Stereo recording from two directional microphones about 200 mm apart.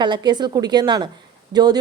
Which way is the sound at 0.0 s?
20° right (ahead or behind).